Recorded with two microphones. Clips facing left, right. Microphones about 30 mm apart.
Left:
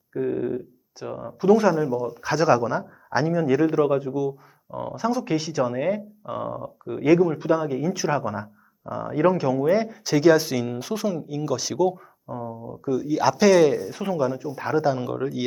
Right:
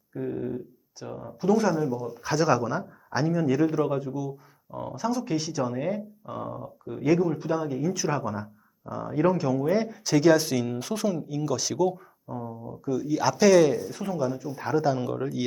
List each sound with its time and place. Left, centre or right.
0.1 s speech: left
2.0 s speech: centre
7.0 s speech: centre